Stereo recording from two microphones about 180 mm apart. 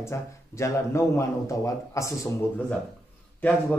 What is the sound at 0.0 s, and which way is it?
Speech, 15° left (ahead or behind).